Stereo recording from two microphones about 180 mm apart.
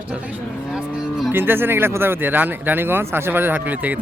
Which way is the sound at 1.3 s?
10° right (ahead or behind).